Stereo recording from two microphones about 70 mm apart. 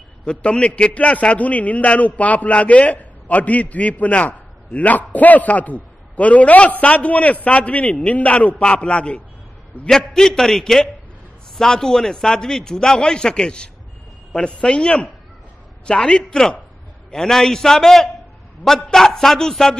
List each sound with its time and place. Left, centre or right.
0.2 s a man's voice: centre